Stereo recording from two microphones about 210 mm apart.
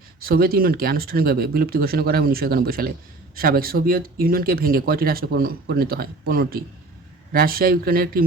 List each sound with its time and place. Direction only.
0.2 s speech: 45° right (ahead or behind)